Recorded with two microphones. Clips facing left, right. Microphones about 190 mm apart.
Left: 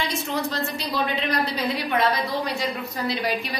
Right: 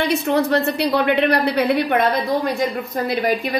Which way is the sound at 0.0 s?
60° right (ahead or behind).